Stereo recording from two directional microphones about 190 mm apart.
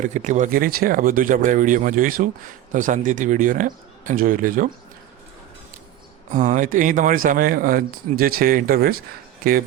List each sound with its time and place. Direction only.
0.0 s speech: 40° right (ahead or behind)
6.3 s speech: 40° right (ahead or behind)